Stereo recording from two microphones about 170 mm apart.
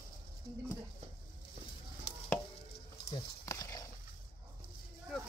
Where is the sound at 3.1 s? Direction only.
15° left (ahead or behind).